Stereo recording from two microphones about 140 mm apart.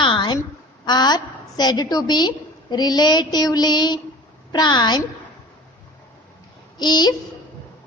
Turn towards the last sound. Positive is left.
turn(degrees=30)  # may be behind; listen again after turning